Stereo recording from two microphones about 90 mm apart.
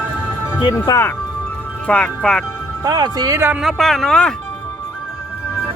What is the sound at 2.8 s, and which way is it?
Speech, 50° right (ahead or behind).